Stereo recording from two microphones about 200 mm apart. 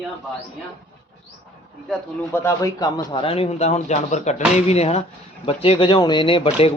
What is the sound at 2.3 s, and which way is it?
A man's voice, 15° left (ahead or behind).